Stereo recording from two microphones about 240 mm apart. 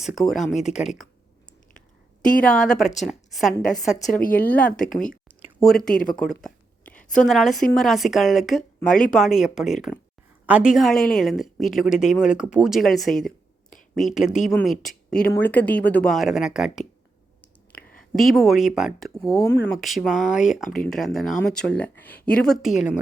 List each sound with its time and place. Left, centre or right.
0.0 s speech: centre
2.4 s a woman's voice: centre
4.1 s speech: left
5.4 s a sound: centre
5.9 s speech: left
6.4 s a sound: centre
7.7 s a woman's voice: centre
18.1 s speech: centre